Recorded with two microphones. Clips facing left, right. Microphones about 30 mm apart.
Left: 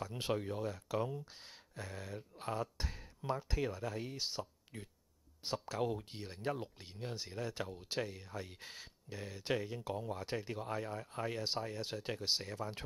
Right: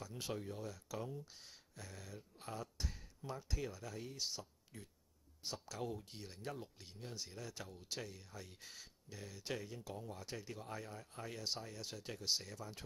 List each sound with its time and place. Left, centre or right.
0.0 s speech: left
4.7 s speech: left
5.4 s speech: left